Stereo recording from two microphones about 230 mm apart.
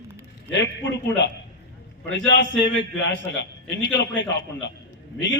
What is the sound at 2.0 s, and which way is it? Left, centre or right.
A man's voice, left.